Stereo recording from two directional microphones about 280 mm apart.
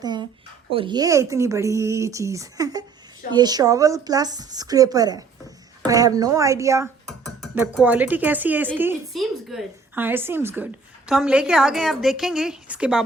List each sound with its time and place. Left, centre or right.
0.0 s a woman's voice: centre